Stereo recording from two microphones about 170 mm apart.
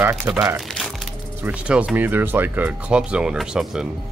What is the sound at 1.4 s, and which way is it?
Speech, 10° right (ahead or behind).